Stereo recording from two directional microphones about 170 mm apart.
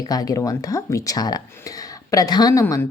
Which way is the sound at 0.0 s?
20° left (ahead or behind).